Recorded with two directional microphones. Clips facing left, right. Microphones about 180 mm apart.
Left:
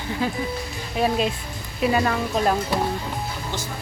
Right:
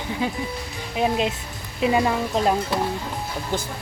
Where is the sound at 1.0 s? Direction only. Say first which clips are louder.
Even; 20° right (ahead or behind).